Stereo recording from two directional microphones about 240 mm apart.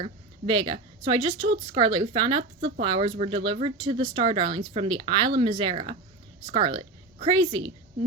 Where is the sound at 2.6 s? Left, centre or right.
Right.